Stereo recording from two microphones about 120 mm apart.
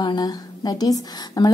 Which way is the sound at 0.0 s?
35° left (ahead or behind).